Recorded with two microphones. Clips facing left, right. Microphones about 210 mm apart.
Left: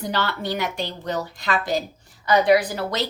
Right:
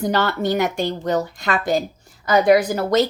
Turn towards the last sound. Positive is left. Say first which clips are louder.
# right 7 dB
turn(degrees=-45)  # may be behind; listen again after turning